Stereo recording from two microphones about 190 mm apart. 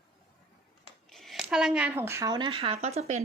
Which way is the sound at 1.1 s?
Centre (ahead or behind).